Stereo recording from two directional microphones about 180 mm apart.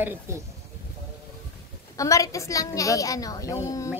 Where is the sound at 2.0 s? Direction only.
20° left (ahead or behind).